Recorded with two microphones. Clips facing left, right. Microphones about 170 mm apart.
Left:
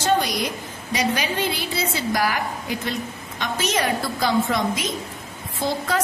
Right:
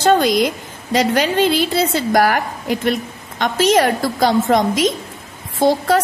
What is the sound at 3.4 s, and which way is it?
A woman's voice, 90° right.